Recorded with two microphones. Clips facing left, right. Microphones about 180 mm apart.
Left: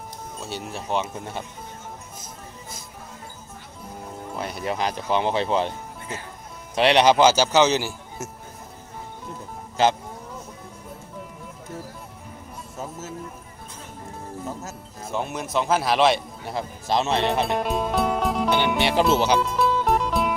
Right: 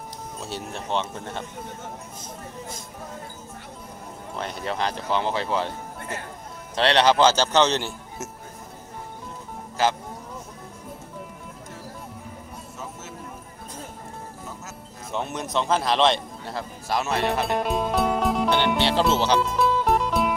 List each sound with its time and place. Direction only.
0.4 s a man's voice: centre (ahead or behind)
4.4 s a man's voice: 10° left (ahead or behind)
15.0 s a man's voice: centre (ahead or behind); by 17.3 s 25° left (ahead or behind)
17.5 s music: centre (ahead or behind)
18.8 s music: 15° left (ahead or behind)
19.1 s a man's voice: 10° left (ahead or behind)
19.4 s music: centre (ahead or behind)